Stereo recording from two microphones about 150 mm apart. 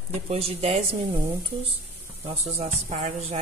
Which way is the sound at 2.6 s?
50° right (ahead or behind).